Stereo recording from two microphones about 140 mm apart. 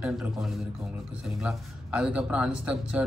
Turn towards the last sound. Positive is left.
turn(degrees=-10)  # may be behind; listen again after turning